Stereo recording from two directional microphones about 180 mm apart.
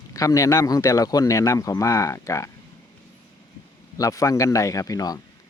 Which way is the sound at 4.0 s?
15° left (ahead or behind).